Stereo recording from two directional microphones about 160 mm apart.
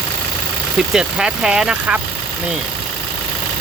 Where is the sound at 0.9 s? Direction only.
5° right (ahead or behind).